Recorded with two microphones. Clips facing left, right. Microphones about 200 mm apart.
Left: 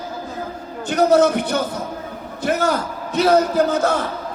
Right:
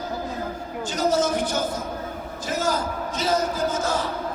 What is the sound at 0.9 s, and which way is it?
A man's voice, 60° left (ahead or behind).